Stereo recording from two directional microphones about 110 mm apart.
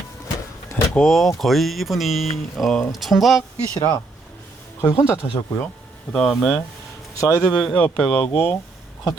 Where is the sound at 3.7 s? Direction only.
20° left (ahead or behind).